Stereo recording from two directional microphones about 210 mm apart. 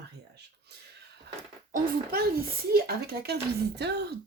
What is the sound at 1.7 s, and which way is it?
Speech, 45° right (ahead or behind).